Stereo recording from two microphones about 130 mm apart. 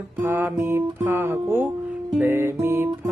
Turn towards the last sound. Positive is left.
turn(degrees=-20)  # may be behind; listen again after turning